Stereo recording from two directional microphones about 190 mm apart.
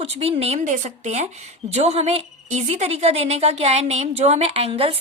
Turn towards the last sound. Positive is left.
turn(degrees=-30)  # may be behind; listen again after turning